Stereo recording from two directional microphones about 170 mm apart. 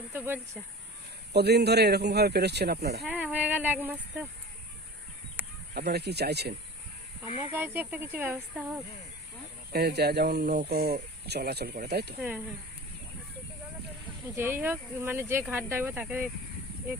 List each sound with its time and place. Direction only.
0.1 s speech: 10° right (ahead or behind)
1.3 s speech: 75° right (ahead or behind)
3.1 s speech: 10° right (ahead or behind)
5.7 s speech: 75° right (ahead or behind)
7.5 s speech: 10° right (ahead or behind)
9.7 s speech: 70° right (ahead or behind)
14.3 s speech: 10° right (ahead or behind)